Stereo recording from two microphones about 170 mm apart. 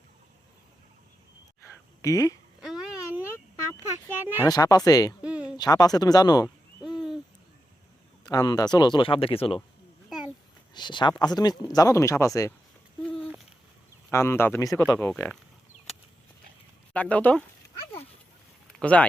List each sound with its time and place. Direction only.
2.0 s speech: 20° left (ahead or behind)
2.6 s a sound: 5° right (ahead or behind)
4.4 s speech: 20° left (ahead or behind)
5.2 s a sound: 5° right (ahead or behind)
5.5 s speech: 25° left (ahead or behind)
8.2 s speech: 20° left (ahead or behind)
10.8 s speech: 25° left (ahead or behind)
14.1 s speech: 15° left (ahead or behind)
16.9 s speech: 10° left (ahead or behind)
18.7 s speech: 5° left (ahead or behind)